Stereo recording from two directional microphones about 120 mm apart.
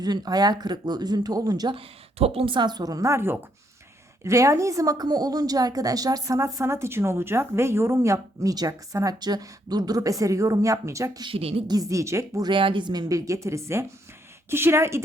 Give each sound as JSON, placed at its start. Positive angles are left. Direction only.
{"t": 0.0, "sound": "speech", "side_deg": -35}
{"t": 1.7, "sound": "a woman's voice", "side_deg": -55}
{"t": 11.2, "sound": "a woman's voice", "side_deg": -50}
{"t": 11.7, "sound": "a woman's voice", "side_deg": -30}
{"t": 12.5, "sound": "a woman's voice", "side_deg": -45}